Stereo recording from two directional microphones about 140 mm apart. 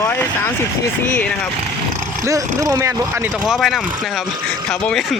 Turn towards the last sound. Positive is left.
turn(degrees=0)  # may be behind; listen again after turning